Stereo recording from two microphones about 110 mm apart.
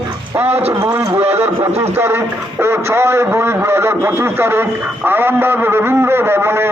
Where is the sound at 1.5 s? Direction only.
70° right (ahead or behind).